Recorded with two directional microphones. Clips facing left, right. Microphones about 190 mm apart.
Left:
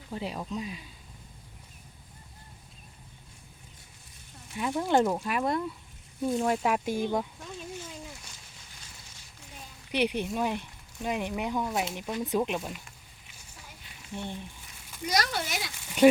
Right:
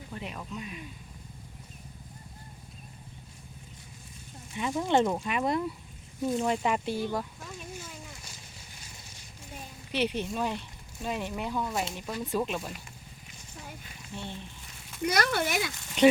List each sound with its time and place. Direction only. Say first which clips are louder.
0.1 s speech: left 6 dB; 30° left (ahead or behind)
4.5 s speech: left 1 dB; centre (ahead or behind); by 7.3 s 15° left (ahead or behind)
9.9 s speech: left 2 dB; 15° left (ahead or behind)
11.7 s speech: left 2 dB; centre (ahead or behind)
11.9 s speech: left 2 dB; 15° left (ahead or behind)
14.1 s speech: left 3 dB; 15° left (ahead or behind)
15.0 s speech: right 3 dB; 60° right (ahead or behind)
15.8 s a sound: left 3 dB; 10° left (ahead or behind)